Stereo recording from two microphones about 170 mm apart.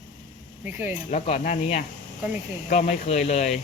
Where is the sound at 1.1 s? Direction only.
40° left (ahead or behind).